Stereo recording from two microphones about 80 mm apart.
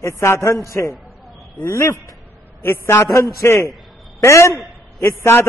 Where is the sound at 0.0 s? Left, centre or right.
Left.